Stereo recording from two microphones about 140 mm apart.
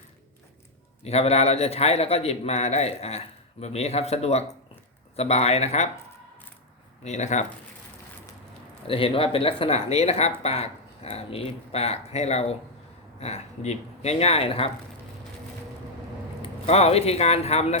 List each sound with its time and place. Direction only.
1.0 s a man's voice: 50° left (ahead or behind)
7.0 s speech: 55° left (ahead or behind)
8.9 s a man's voice: 40° left (ahead or behind)
16.4 s speech: 50° left (ahead or behind)